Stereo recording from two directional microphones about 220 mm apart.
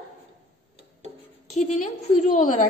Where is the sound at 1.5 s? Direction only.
30° left (ahead or behind).